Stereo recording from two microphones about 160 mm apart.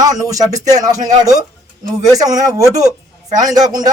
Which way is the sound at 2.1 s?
20° right (ahead or behind).